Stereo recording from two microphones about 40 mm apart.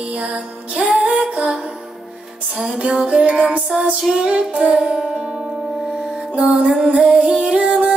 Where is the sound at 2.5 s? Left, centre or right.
Right.